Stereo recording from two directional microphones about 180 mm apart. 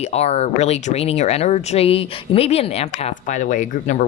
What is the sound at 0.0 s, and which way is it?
Speech, 35° left (ahead or behind).